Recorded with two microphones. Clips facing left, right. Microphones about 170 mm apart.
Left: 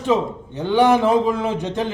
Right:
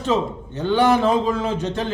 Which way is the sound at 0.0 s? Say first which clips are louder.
Left 2 dB; 15° left (ahead or behind).